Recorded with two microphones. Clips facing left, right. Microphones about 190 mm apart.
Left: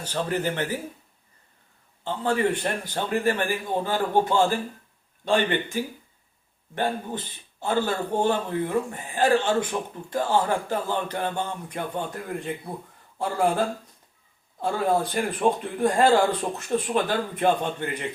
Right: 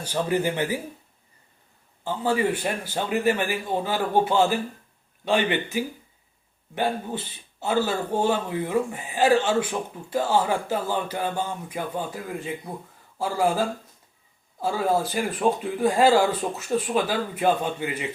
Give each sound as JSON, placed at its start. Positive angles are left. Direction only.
{"t": 0.0, "sound": "a man's voice", "side_deg": -10}
{"t": 2.0, "sound": "a man's voice", "side_deg": -10}